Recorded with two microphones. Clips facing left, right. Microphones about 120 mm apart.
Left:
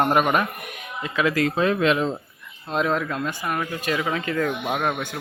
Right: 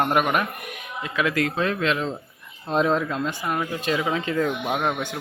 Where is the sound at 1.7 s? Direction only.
15° left (ahead or behind).